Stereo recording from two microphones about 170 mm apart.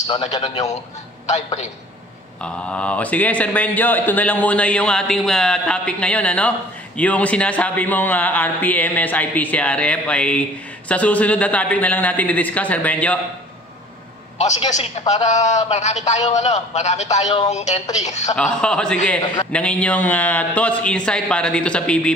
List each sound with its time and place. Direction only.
2.4 s speech: 5° left (ahead or behind)
14.7 s a man's voice: 40° left (ahead or behind)
18.3 s a man's voice: 5° left (ahead or behind)